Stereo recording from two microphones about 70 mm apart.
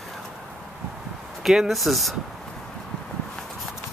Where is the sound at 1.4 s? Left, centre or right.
Centre.